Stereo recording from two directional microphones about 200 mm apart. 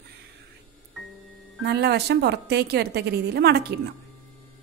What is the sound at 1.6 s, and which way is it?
A woman's voice, 55° right (ahead or behind).